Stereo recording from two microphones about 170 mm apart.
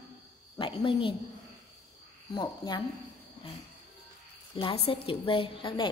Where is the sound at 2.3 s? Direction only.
25° left (ahead or behind).